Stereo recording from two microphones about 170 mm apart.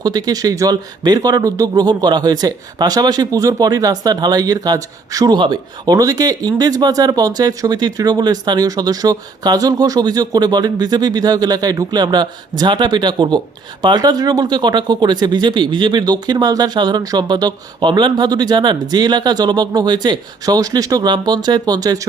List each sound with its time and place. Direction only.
0.0 s a man's voice: 20° right (ahead or behind)